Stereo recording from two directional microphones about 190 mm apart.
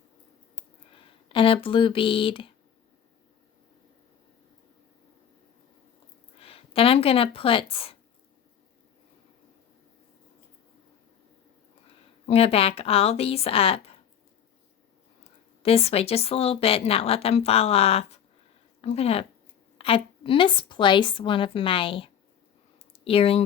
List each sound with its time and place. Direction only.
1.3 s a woman's voice: 25° left (ahead or behind)
6.4 s speech: 30° left (ahead or behind)
12.2 s a woman's voice: 30° left (ahead or behind)
15.6 s a woman's voice: 30° left (ahead or behind)
22.9 s a sound: 30° left (ahead or behind)